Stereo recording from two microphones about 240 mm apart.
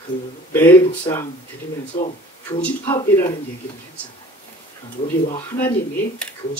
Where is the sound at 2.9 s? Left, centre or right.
Centre.